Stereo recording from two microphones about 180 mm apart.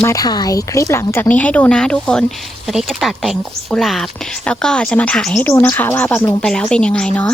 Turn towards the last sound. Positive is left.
turn(degrees=5)  # may be behind; listen again after turning